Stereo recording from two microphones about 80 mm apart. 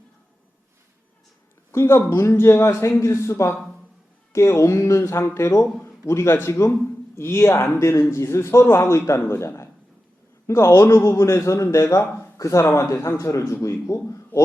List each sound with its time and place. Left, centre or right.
1.7 s a man's voice: left